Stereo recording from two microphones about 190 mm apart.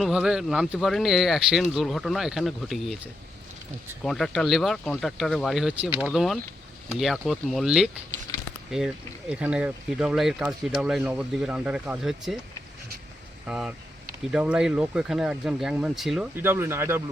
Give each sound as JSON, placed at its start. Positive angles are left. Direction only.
{"t": 0.0, "sound": "speech", "side_deg": -5}
{"t": 8.3, "sound": "a sound", "side_deg": 20}
{"t": 9.3, "sound": "speech", "side_deg": -5}
{"t": 13.5, "sound": "speech", "side_deg": -5}